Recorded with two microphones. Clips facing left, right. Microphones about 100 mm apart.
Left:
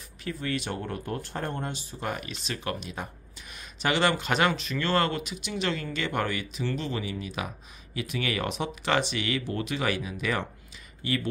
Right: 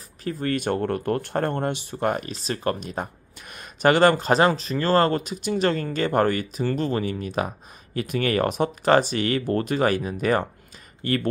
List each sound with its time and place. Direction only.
0.2 s speech: 45° right (ahead or behind)